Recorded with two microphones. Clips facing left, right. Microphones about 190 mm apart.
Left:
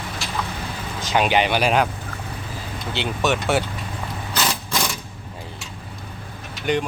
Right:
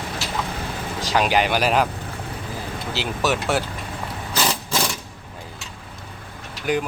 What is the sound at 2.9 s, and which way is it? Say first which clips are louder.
Speech: left 1 dB; 5° right (ahead or behind).